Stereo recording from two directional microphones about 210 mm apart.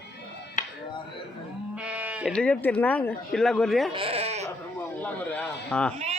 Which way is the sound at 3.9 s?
25° right (ahead or behind).